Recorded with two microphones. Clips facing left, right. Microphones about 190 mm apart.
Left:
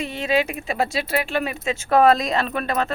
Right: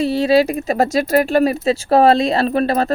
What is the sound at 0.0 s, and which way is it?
Speech, 35° right (ahead or behind).